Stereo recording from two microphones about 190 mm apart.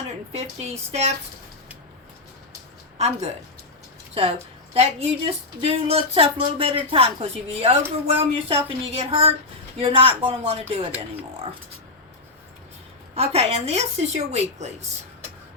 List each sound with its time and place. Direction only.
0.3 s speech: 35° right (ahead or behind)
4.1 s speech: 30° right (ahead or behind)
13.1 s speech: 30° right (ahead or behind)